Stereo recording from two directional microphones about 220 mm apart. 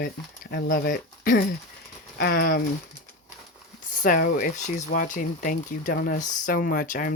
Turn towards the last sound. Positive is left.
turn(degrees=40)  # may be behind; listen again after turning